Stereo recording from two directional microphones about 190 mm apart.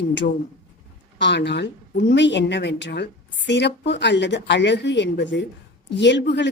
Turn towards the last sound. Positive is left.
turn(degrees=70)  # may be behind; listen again after turning